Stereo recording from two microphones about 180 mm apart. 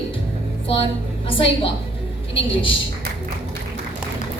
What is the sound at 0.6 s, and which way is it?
A woman's voice, 30° left (ahead or behind).